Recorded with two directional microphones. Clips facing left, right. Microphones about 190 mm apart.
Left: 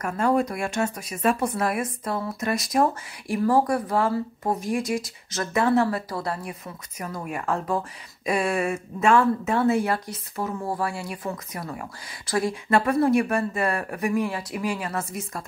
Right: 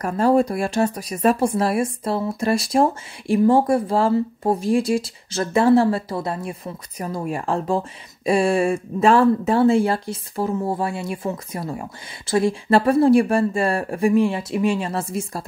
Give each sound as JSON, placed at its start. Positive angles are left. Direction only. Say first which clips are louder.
{"t": 0.0, "sound": "speech", "louder": "right 5 dB", "side_deg": -30}